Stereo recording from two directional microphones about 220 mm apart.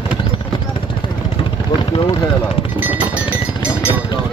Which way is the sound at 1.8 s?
20° left (ahead or behind).